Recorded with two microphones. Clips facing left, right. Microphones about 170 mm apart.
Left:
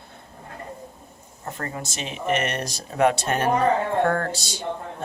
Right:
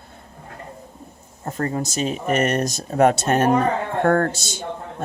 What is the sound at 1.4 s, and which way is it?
Speech, 40° right (ahead or behind).